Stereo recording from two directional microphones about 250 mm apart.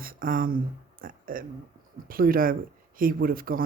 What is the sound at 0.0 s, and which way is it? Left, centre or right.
Speech, right.